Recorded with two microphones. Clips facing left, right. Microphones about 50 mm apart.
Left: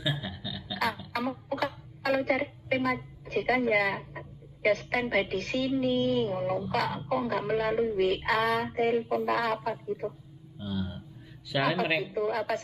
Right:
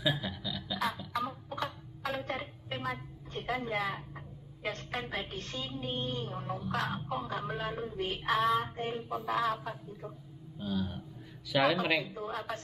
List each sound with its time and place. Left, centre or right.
0.2 s music: centre
1.1 s music: left
4.6 s a woman's voice: left
10.6 s a sound: centre
11.5 s speech: centre
12.1 s a woman's voice: left